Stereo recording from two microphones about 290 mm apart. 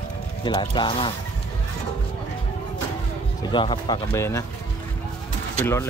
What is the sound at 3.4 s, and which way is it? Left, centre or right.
Speech, centre.